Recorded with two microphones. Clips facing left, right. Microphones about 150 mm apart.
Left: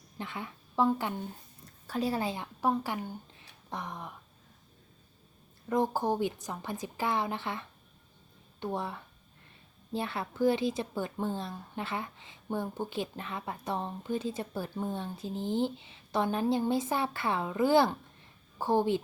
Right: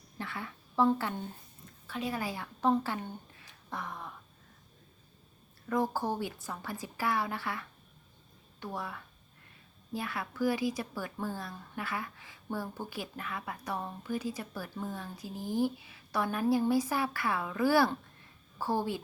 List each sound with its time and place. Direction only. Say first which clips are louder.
0.2 s a sound: left 1 dB; 20° left (ahead or behind)
0.9 s speech: even; 15° left (ahead or behind)
1.9 s a woman's voice: left 4 dB; 35° left (ahead or behind)
2.6 s a woman's voice: right 2 dB; 10° left (ahead or behind)
5.6 s a woman's voice: left 2 dB; 20° left (ahead or behind)
8.6 s a woman's voice: left 5 dB; 25° left (ahead or behind)